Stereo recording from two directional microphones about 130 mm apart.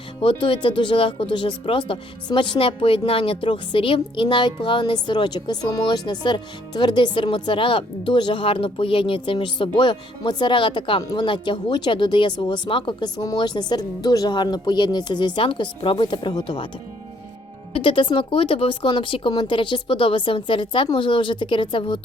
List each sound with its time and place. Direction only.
0.2 s speech: 40° left (ahead or behind)
17.7 s speech: 40° left (ahead or behind)